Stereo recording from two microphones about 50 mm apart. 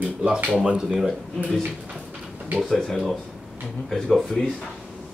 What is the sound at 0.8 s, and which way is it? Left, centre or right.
Speech, centre.